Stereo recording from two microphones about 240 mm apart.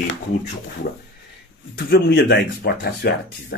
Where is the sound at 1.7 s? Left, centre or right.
Left.